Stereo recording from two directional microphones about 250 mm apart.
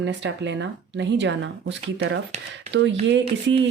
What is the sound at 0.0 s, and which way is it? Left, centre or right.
Speech, right.